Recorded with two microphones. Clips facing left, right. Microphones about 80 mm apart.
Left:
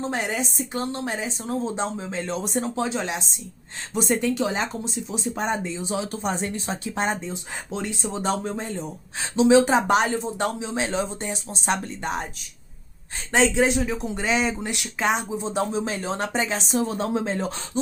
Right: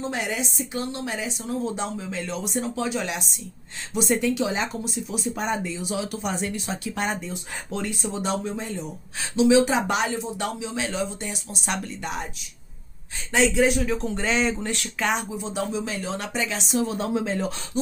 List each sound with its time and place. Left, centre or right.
0.1 s speech: left
3.9 s speech: left
8.0 s speech: left
13.5 s speech: left